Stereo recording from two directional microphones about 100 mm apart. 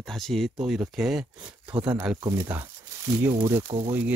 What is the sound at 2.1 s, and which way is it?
Speech, 35° right (ahead or behind).